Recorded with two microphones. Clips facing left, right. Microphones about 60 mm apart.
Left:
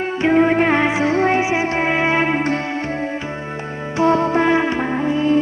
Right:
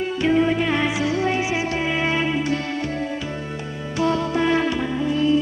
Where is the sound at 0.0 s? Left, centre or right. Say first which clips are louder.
Left 4 dB; left.